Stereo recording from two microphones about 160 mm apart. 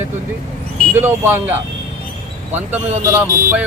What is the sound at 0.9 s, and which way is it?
Speech, 15° right (ahead or behind).